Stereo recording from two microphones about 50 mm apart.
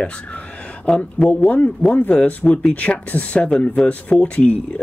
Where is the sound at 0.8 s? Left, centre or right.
Left.